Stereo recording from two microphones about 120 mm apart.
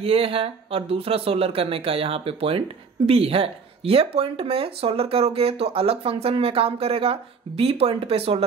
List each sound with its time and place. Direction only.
0.0 s speech: 50° right (ahead or behind)